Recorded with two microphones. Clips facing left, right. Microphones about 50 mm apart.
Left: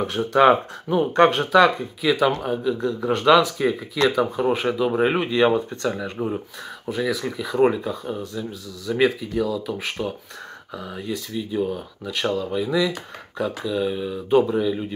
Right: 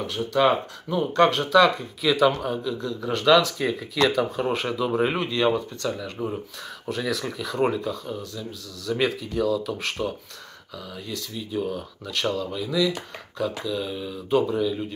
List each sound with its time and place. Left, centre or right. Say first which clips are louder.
0.0 s speech: left 5 dB; left
2.0 s speech: even; centre
6.9 s speech: left 3 dB; centre
8.8 s speech: left 4 dB; centre
10.7 s speech: left 5 dB; left